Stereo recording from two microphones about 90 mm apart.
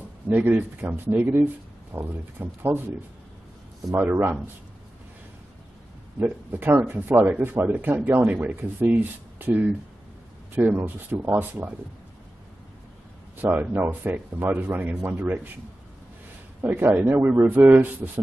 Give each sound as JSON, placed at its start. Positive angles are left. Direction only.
{"t": 0.3, "sound": "speech", "side_deg": -20}
{"t": 3.9, "sound": "speech", "side_deg": -25}
{"t": 6.1, "sound": "speech", "side_deg": -20}
{"t": 13.4, "sound": "speech", "side_deg": -20}
{"t": 16.6, "sound": "speech", "side_deg": -20}